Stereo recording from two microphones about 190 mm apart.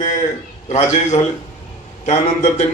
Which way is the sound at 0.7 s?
35° left (ahead or behind).